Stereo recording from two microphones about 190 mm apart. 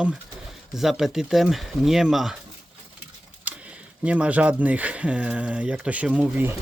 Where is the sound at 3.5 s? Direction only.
10° right (ahead or behind).